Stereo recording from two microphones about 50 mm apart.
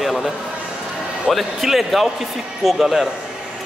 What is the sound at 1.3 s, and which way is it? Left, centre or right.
Speech, centre.